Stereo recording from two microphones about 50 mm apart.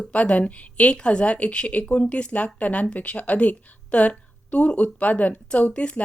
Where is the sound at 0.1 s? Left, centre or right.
Left.